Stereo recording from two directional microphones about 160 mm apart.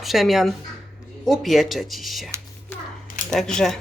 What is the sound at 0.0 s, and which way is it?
A woman's voice, centre (ahead or behind).